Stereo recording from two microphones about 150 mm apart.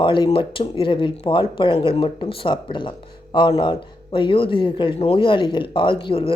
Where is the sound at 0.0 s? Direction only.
35° left (ahead or behind).